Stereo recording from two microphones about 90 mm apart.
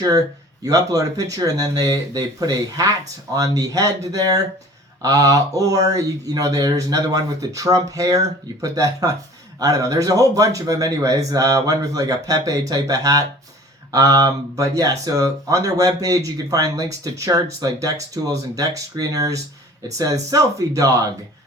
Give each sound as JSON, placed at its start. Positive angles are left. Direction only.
{"t": 0.6, "sound": "speech", "side_deg": -40}